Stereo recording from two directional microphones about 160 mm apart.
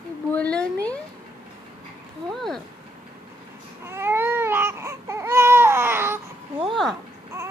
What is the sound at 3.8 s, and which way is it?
Baby cry, 15° right (ahead or behind).